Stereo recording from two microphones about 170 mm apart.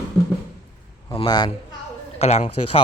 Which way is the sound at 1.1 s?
25° left (ahead or behind).